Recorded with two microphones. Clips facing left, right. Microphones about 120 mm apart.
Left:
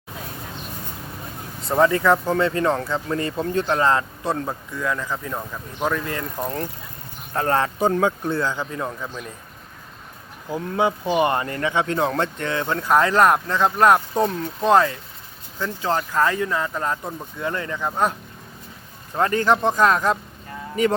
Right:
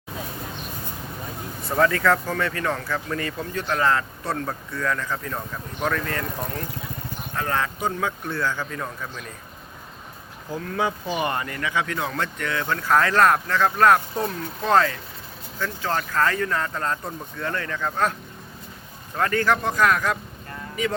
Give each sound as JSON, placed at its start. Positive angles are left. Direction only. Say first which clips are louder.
{"t": 1.6, "sound": "speech", "louder": "left 3 dB", "side_deg": 25}
{"t": 7.3, "sound": "speech", "louder": "left 5 dB", "side_deg": 35}
{"t": 10.5, "sound": "speech", "louder": "left 4 dB", "side_deg": 20}
{"t": 19.1, "sound": "speech", "louder": "left 3 dB", "side_deg": 25}